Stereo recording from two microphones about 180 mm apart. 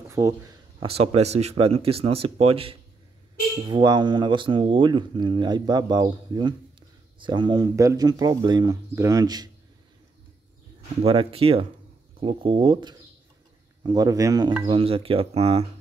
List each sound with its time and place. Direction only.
0.1 s a sound: 20° right (ahead or behind)
0.8 s speech: 35° right (ahead or behind)
11.0 s speech: 30° right (ahead or behind)
14.7 s speech: 30° right (ahead or behind)